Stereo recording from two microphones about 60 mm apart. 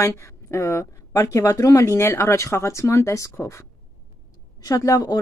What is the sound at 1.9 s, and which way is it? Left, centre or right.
Speech, left.